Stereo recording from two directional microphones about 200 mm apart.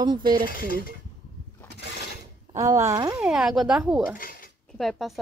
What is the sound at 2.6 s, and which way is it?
Speech, 15° right (ahead or behind).